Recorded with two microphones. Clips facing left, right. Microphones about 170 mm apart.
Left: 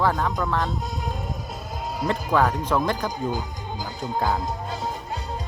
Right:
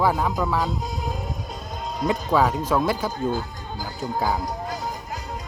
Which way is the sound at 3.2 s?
15° left (ahead or behind).